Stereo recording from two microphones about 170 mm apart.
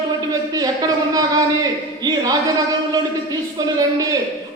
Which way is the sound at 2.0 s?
25° right (ahead or behind).